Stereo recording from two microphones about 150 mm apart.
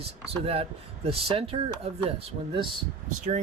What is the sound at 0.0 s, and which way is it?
Speech, 40° right (ahead or behind).